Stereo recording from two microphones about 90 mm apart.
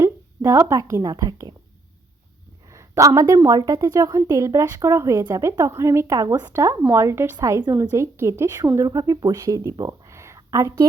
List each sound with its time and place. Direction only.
0.0 s a woman's voice: 30° right (ahead or behind)
2.6 s a woman's voice: 35° right (ahead or behind)
8.9 s speech: 45° right (ahead or behind)
9.6 s a sound: 35° right (ahead or behind)